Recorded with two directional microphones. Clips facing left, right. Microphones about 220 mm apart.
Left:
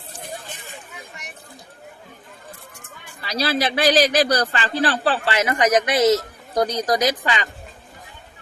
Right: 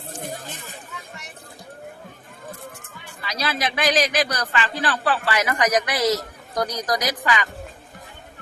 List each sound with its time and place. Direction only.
0.2 s chatter: 45° right (ahead or behind)
3.2 s a man's voice: 35° left (ahead or behind)